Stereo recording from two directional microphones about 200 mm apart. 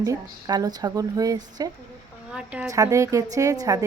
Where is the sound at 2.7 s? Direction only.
15° right (ahead or behind).